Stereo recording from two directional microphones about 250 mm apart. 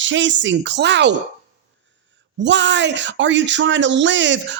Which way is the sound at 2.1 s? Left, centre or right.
Right.